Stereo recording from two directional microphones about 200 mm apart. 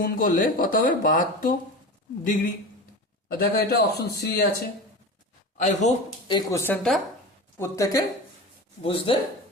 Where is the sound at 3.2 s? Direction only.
50° left (ahead or behind).